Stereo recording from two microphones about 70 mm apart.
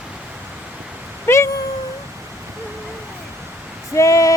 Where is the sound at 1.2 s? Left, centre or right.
Left.